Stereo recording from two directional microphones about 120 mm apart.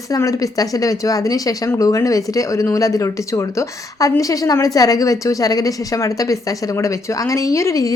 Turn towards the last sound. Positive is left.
turn(degrees=25)  # may be behind; listen again after turning